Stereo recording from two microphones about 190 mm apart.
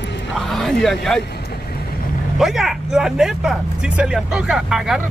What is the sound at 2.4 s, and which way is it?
Speech, centre (ahead or behind).